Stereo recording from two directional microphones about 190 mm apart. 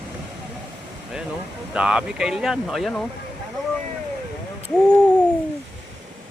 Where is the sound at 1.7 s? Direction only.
5° right (ahead or behind).